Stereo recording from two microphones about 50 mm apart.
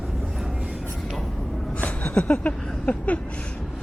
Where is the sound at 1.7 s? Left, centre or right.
Left.